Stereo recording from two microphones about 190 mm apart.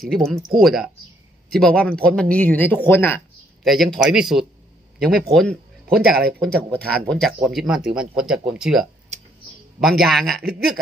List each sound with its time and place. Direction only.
0.0 s speech: centre (ahead or behind)
5.9 s speech: 55° right (ahead or behind)
6.4 s speech: 5° left (ahead or behind)
9.1 s tick-tock: 35° right (ahead or behind)
9.8 s speech: centre (ahead or behind)